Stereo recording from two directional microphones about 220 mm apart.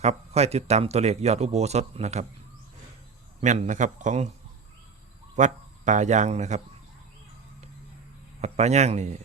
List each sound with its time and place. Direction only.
0.0 s speech: 30° right (ahead or behind)
3.4 s a man's voice: 35° right (ahead or behind)
5.4 s speech: 35° right (ahead or behind)
8.4 s a man's voice: 30° right (ahead or behind)